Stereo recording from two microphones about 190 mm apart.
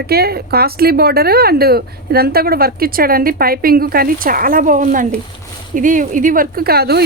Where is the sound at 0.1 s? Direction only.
55° right (ahead or behind).